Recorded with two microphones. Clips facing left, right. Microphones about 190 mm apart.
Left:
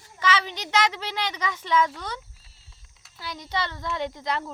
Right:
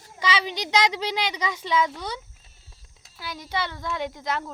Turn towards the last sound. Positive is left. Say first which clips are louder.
# even
turn(degrees=0)  # may be behind; listen again after turning